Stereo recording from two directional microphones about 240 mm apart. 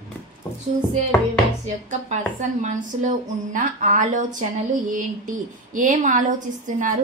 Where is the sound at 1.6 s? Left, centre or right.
Right.